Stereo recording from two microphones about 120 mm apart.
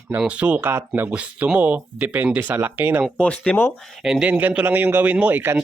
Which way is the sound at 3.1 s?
10° left (ahead or behind).